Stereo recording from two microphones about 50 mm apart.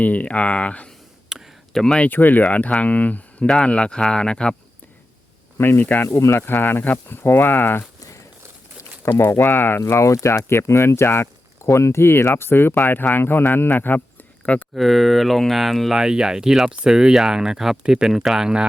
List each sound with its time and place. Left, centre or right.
0.0 s speech: left
1.3 s a sound: centre
1.7 s speech: centre
2.0 s speech: left; by 4.5 s centre
5.5 s speech: left
5.8 s speech: left
6.1 s speech: left
6.3 s speech: left
9.0 s speech: left
9.8 s speech: left
14.8 s speech: centre
16.0 s speech: centre